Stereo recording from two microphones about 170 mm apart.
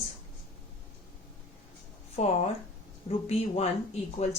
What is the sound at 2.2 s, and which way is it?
Speech, 40° left (ahead or behind).